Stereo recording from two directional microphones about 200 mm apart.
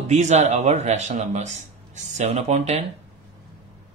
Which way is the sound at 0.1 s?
35° right (ahead or behind).